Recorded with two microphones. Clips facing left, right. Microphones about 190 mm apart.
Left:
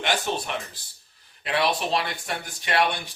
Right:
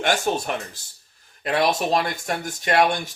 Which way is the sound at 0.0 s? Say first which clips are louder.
Right 4 dB; 45° right (ahead or behind).